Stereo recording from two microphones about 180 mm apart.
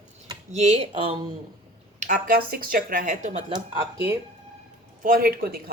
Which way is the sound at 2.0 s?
55° right (ahead or behind).